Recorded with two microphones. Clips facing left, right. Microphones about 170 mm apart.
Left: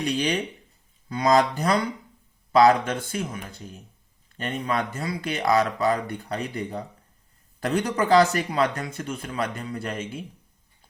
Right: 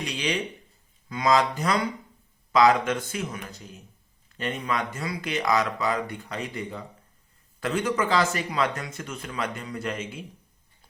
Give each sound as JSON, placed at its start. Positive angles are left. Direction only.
{"t": 0.0, "sound": "speech", "side_deg": 35}